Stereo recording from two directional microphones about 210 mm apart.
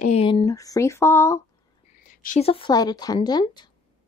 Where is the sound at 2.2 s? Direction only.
30° left (ahead or behind).